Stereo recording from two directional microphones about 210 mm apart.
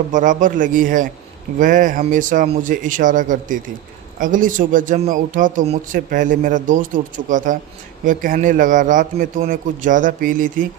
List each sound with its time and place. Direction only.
0.1 s speech: 35° right (ahead or behind)